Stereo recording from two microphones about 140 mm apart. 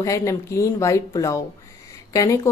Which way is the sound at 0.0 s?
20° left (ahead or behind).